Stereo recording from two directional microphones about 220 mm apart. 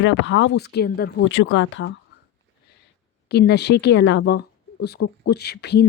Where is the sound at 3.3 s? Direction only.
50° left (ahead or behind).